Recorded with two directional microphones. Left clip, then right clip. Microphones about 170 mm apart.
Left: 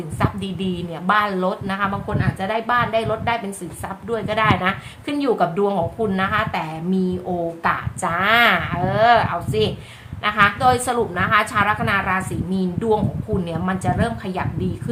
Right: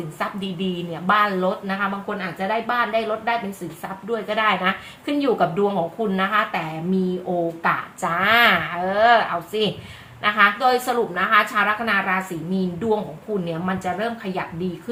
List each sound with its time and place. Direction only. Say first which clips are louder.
0.2 s a woman's voice: left 2 dB; 15° left (ahead or behind)
7.6 s a woman's voice: left 1 dB; 10° left (ahead or behind)